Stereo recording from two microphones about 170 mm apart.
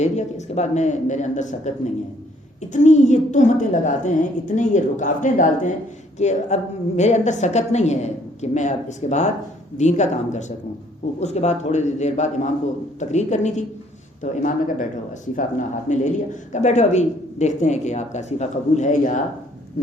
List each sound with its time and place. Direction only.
0.0 s speech: 40° left (ahead or behind)